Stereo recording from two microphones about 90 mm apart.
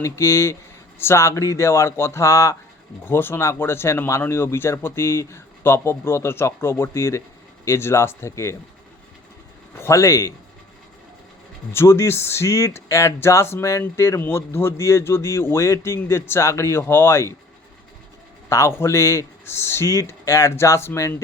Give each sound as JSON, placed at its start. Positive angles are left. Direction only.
{"t": 0.0, "sound": "speech", "side_deg": 30}
{"t": 9.7, "sound": "speech", "side_deg": 30}
{"t": 11.7, "sound": "speech", "side_deg": 30}
{"t": 18.4, "sound": "a man's voice", "side_deg": 30}